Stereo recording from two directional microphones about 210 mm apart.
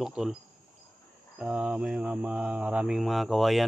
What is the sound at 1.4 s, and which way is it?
Speech, 5° right (ahead or behind).